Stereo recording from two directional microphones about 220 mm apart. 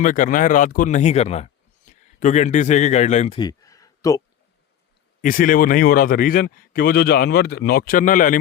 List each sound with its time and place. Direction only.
0.0 s a man's voice: 35° left (ahead or behind); by 4.2 s 15° left (ahead or behind)
5.2 s speech: 40° left (ahead or behind)